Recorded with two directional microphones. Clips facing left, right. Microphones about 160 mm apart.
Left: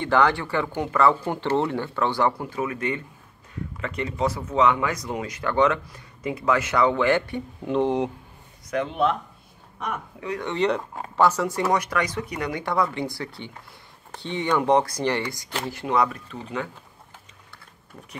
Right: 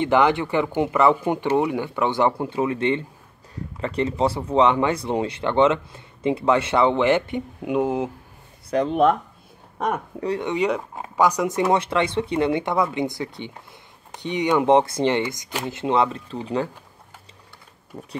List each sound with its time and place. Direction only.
0.0 s speech: 20° right (ahead or behind)
8.6 s speech: 35° right (ahead or behind)
10.4 s speech: 10° right (ahead or behind); by 16.7 s 30° right (ahead or behind)
17.9 s speech: 55° right (ahead or behind)